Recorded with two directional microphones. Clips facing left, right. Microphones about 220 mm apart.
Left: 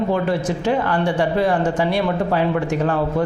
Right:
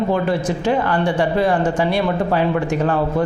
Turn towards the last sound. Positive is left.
turn(degrees=-20)  # may be behind; listen again after turning